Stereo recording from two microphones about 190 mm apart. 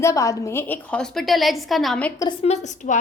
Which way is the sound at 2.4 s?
35° left (ahead or behind).